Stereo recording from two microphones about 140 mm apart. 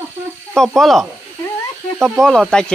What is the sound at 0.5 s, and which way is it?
Speech, centre (ahead or behind).